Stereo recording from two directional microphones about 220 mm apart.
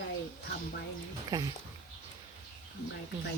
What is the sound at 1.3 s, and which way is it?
Speech, 15° right (ahead or behind).